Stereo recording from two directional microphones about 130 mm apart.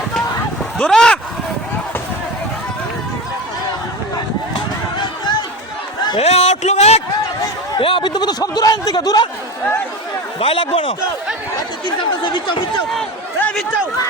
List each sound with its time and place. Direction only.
0.8 s speech: 5° left (ahead or behind)
4.9 s run: 35° left (ahead or behind)
6.1 s speech: 55° left (ahead or behind)
7.8 s speech: 40° left (ahead or behind)
10.4 s a man's voice: 45° left (ahead or behind)
11.5 s speech: 35° left (ahead or behind)
13.4 s a sound: 5° left (ahead or behind)